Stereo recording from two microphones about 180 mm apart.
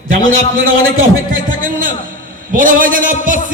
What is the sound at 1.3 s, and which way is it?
A man's voice, 50° right (ahead or behind).